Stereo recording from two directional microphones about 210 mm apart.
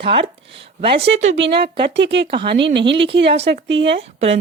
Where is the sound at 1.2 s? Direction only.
60° right (ahead or behind).